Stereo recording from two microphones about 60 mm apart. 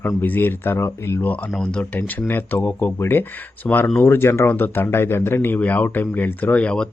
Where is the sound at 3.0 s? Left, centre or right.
Left.